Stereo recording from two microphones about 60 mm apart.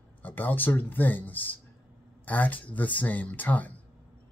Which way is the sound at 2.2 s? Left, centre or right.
Left.